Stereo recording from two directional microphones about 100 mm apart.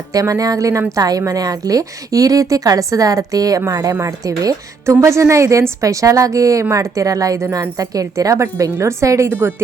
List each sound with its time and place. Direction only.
0.1 s speech: 35° right (ahead or behind)
9.3 s a woman's voice: 20° right (ahead or behind)